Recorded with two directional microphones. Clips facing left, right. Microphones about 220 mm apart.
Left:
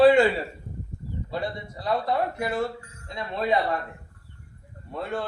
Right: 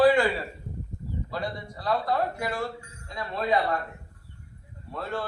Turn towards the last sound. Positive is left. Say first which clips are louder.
# left 2 dB
turn(degrees=20)  # may be behind; listen again after turning